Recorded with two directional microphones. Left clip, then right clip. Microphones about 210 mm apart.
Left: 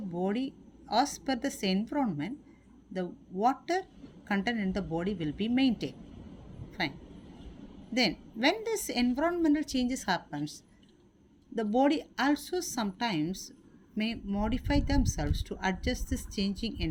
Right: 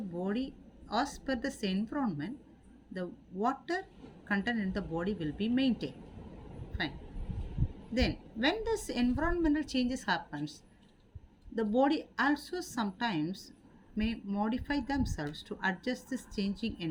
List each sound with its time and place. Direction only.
0.2 s a woman's voice: 35° left (ahead or behind)
7.9 s a woman's voice: 35° left (ahead or behind)
11.8 s a woman's voice: 35° left (ahead or behind)